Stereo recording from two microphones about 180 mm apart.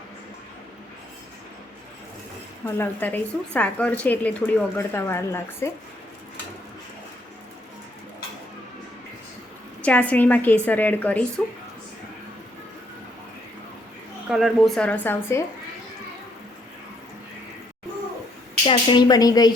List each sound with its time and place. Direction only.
2.7 s speech: 10° left (ahead or behind)
9.8 s speech: 5° left (ahead or behind)
14.3 s speech: centre (ahead or behind)
18.6 s speech: 30° left (ahead or behind)